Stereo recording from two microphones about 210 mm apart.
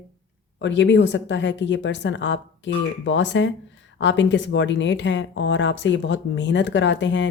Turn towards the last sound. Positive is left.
turn(degrees=60)  # may be behind; listen again after turning